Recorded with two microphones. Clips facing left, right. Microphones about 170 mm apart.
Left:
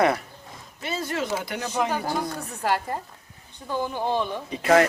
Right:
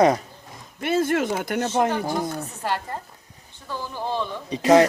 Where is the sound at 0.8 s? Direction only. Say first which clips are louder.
Right 7 dB; 55° right (ahead or behind).